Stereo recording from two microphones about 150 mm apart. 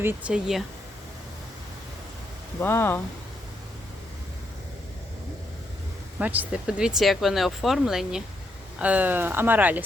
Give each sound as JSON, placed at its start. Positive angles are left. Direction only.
{"t": 0.0, "sound": "speech", "side_deg": -15}
{"t": 2.6, "sound": "speech", "side_deg": 15}
{"t": 6.1, "sound": "speech", "side_deg": -10}